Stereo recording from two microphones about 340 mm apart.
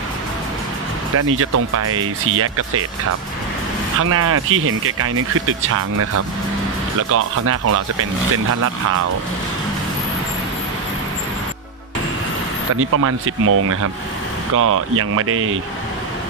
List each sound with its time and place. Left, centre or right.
1.1 s speech: right
12.7 s speech: right